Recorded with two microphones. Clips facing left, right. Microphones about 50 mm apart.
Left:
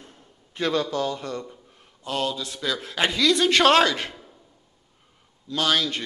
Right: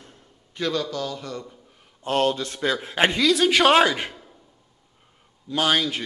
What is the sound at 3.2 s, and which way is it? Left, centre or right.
A man's voice, centre.